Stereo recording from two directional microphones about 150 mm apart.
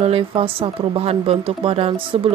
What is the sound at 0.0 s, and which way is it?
Speech, 40° right (ahead or behind).